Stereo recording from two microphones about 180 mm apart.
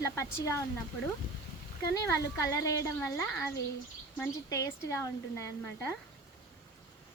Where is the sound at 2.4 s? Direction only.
15° left (ahead or behind).